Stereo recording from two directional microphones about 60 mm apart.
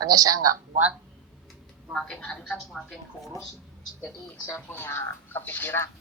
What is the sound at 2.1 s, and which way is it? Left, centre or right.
Speech, left.